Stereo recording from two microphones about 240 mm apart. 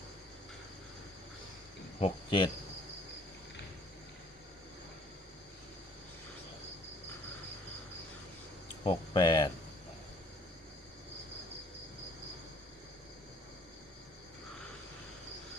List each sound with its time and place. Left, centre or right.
2.0 s cricket: left
8.8 s speech: centre